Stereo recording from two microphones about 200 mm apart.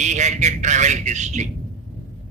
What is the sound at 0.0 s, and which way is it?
A man's voice, 35° right (ahead or behind).